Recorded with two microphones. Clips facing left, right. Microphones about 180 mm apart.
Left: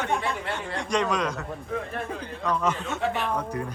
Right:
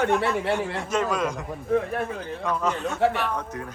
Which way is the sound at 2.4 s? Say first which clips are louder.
Even; centre (ahead or behind).